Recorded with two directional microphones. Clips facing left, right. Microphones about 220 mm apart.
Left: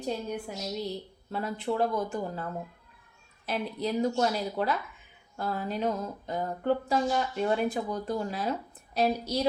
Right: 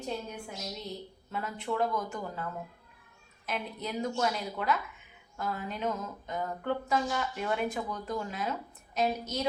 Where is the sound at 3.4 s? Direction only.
35° left (ahead or behind).